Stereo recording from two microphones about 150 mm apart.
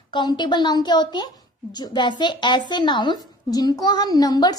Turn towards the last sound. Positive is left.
turn(degrees=25)  # may be behind; listen again after turning